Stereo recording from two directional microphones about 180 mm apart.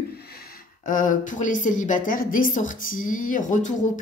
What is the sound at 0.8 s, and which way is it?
A woman's voice, 50° left (ahead or behind).